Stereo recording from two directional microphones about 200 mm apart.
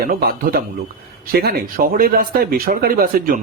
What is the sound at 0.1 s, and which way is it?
Speech, 50° right (ahead or behind).